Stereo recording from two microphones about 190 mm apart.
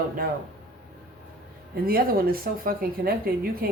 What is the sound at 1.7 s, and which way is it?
Speech, 50° right (ahead or behind).